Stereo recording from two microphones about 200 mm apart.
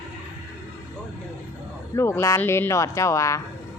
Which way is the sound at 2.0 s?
15° left (ahead or behind).